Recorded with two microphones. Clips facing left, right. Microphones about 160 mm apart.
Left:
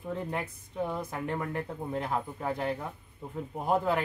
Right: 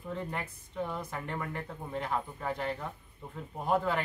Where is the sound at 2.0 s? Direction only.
15° left (ahead or behind).